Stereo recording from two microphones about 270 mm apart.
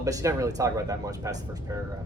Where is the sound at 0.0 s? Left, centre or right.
Centre.